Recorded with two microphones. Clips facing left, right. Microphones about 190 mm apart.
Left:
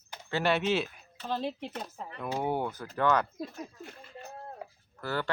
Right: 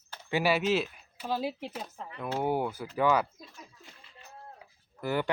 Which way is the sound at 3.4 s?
55° left (ahead or behind).